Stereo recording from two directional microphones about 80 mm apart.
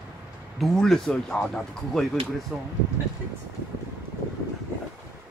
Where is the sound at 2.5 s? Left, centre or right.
Centre.